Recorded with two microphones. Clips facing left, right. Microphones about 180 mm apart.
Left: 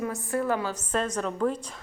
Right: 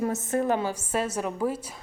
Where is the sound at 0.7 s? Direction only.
10° right (ahead or behind).